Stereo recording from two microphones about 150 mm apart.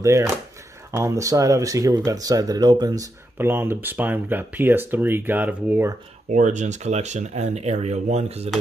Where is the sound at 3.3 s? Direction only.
15° right (ahead or behind).